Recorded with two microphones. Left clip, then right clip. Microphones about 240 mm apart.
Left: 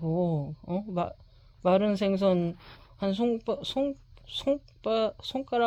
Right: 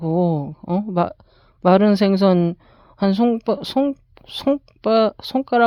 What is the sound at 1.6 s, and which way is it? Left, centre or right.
Speech, right.